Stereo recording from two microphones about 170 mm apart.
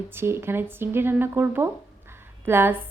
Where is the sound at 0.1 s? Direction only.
15° right (ahead or behind).